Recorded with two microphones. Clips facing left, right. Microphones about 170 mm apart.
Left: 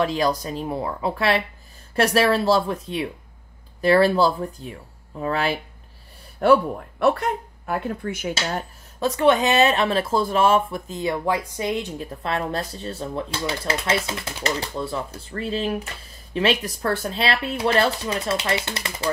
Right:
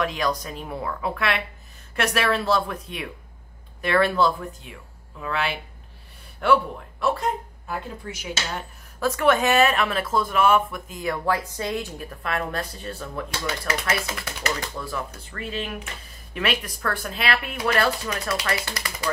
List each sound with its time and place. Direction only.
0.0 s speech: 30° left (ahead or behind)
7.0 s speech: 60° left (ahead or behind)
9.0 s speech: 20° left (ahead or behind)